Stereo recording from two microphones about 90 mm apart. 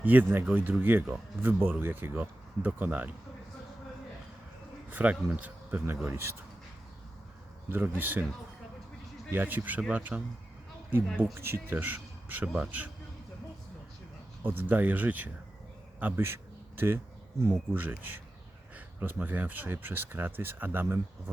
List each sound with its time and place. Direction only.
0.0 s speech: 20° right (ahead or behind)
4.9 s speech: 20° right (ahead or behind)
5.8 s speech: 25° right (ahead or behind)
7.7 s speech: 20° right (ahead or behind)
9.3 s speech: 20° right (ahead or behind)
11.3 s speech: 25° right (ahead or behind)
14.4 s speech: 25° right (ahead or behind)
16.0 s a sound: 25° right (ahead or behind)
17.7 s speech: 20° right (ahead or behind)